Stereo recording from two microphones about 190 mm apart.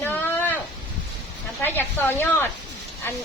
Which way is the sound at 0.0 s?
10° left (ahead or behind).